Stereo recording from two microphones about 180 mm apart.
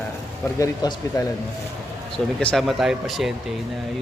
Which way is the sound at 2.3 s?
Centre (ahead or behind).